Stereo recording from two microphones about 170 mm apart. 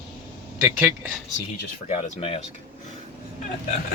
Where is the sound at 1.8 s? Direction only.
40° left (ahead or behind).